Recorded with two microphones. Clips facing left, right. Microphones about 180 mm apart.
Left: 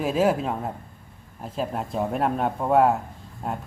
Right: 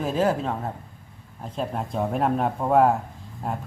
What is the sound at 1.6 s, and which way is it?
A man's voice, centre (ahead or behind).